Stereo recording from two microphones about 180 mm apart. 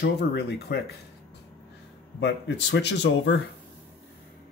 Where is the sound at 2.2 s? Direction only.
70° left (ahead or behind).